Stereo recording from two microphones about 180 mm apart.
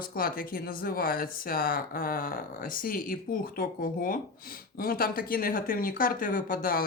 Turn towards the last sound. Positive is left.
turn(degrees=55)  # may be behind; listen again after turning